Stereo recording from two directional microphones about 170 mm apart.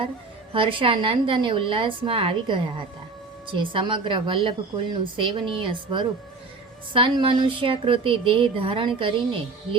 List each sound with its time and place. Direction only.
0.5 s a woman's voice: 30° right (ahead or behind)